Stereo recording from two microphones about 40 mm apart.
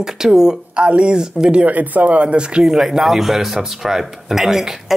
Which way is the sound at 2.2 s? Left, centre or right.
Right.